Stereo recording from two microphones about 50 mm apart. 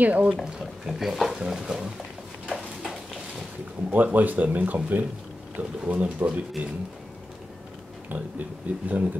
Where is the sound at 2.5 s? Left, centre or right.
Centre.